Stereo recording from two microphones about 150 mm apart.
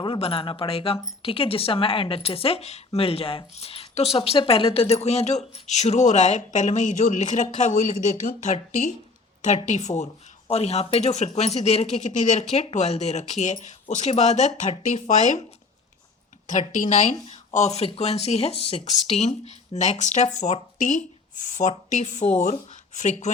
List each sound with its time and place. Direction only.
0.0 s speech: 35° left (ahead or behind); by 15.4 s 55° left (ahead or behind)
16.5 s speech: 60° left (ahead or behind)